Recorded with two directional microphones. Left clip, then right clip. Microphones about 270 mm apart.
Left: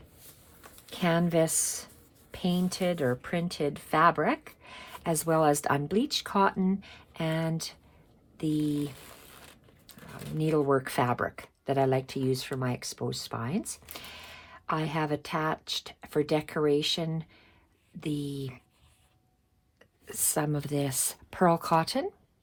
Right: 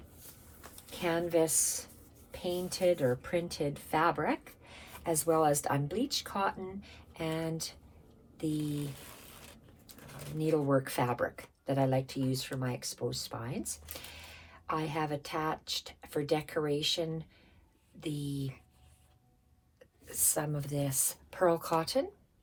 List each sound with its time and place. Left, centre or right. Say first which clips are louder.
0.9 s speech: left 4 dB; left
10.3 s speech: left 3 dB; left
20.1 s speech: left 4 dB; left